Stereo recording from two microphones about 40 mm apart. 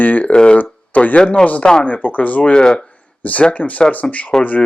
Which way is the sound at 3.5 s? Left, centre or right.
Left.